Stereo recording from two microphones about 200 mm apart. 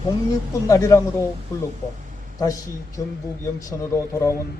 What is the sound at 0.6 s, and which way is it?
Speech, 15° left (ahead or behind).